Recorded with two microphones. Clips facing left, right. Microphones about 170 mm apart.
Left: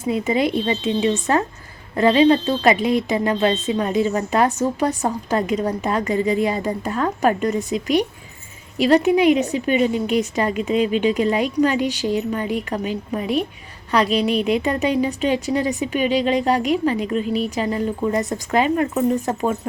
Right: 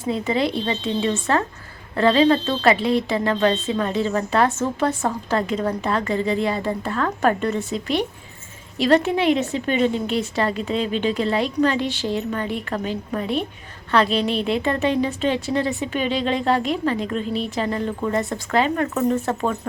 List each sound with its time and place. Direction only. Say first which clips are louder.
0.3 s speech: left 2 dB; 15° left (ahead or behind)